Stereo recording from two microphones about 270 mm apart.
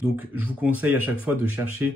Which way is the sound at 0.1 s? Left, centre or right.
Centre.